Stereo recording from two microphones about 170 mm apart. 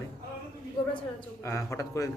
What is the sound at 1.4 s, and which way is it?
Speech, 15° left (ahead or behind).